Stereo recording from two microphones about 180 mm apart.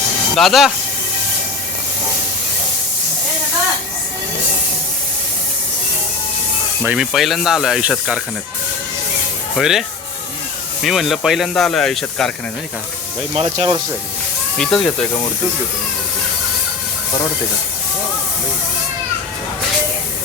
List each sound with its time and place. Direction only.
0.3 s speech: centre (ahead or behind)
6.8 s speech: 5° right (ahead or behind)
9.6 s speech: centre (ahead or behind)
10.8 s speech: centre (ahead or behind)
13.3 s speech: 30° right (ahead or behind)
14.6 s speech: 5° left (ahead or behind)